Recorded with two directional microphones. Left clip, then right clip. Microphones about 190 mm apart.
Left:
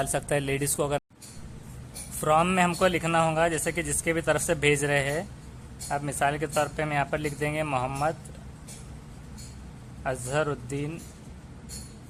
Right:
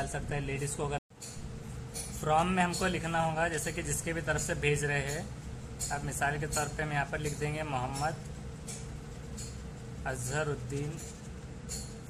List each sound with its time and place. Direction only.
0.0 s speech: 45° left (ahead or behind)
2.2 s a man's voice: 30° left (ahead or behind)
10.0 s a man's voice: 35° left (ahead or behind)